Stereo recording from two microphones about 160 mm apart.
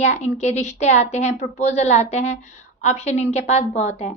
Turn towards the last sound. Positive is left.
turn(degrees=45)  # may be behind; listen again after turning